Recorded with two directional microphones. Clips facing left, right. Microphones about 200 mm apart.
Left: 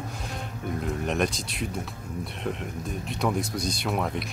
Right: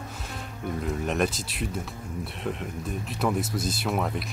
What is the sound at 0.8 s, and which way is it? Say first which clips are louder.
Speech: even; centre (ahead or behind).